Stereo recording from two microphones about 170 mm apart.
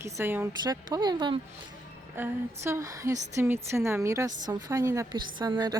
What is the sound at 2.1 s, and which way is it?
Speech, 15° right (ahead or behind).